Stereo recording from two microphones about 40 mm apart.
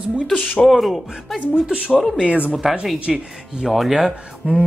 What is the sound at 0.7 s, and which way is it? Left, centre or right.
Speech, centre.